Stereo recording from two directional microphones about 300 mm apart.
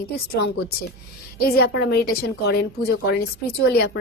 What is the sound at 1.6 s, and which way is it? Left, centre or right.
Speech, left.